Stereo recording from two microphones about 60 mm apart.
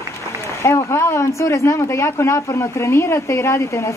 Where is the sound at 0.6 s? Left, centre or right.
Left.